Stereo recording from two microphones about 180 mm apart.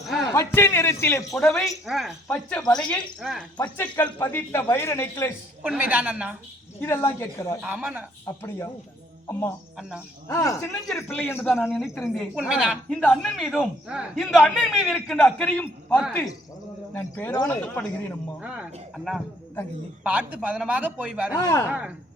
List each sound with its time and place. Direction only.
0.3 s speech: 15° left (ahead or behind)
1.4 s speech: centre (ahead or behind)
3.8 s speech: 10° left (ahead or behind)
5.6 s speech: 10° right (ahead or behind)
6.7 s speech: 15° left (ahead or behind)
7.6 s speech: 5° right (ahead or behind)
8.3 s speech: 15° left (ahead or behind)
10.2 s speech: 15° left (ahead or behind)
11.7 s speech: centre (ahead or behind)
12.9 s speech: 5° left (ahead or behind)
18.3 s speech: 5° right (ahead or behind)
21.3 s speech: 20° left (ahead or behind)
21.7 s speech: 5° right (ahead or behind)